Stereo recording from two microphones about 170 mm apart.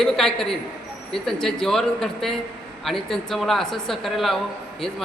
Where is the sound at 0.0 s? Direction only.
Centre (ahead or behind).